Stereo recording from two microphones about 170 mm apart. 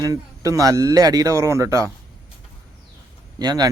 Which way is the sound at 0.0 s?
20° right (ahead or behind).